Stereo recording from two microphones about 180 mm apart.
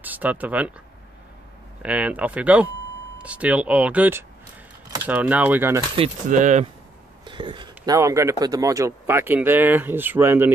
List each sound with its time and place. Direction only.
0.0 s speech: 10° right (ahead or behind)
1.8 s speech: 5° right (ahead or behind)
6.2 s speech: 45° right (ahead or behind)
7.2 s speech: 25° right (ahead or behind)